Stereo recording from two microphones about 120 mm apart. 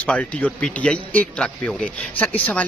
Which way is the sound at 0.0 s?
10° left (ahead or behind).